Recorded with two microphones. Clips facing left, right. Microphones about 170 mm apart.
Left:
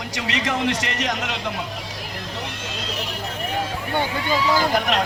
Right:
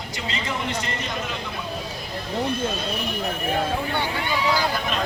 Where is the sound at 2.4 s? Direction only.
90° left.